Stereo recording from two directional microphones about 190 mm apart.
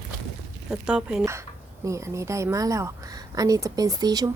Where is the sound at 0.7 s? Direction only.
5° right (ahead or behind).